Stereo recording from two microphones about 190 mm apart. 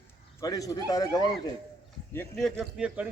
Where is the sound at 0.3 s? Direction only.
20° left (ahead or behind).